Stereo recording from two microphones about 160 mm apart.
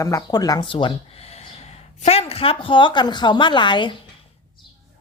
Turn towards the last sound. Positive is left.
turn(degrees=30)  # may be behind; listen again after turning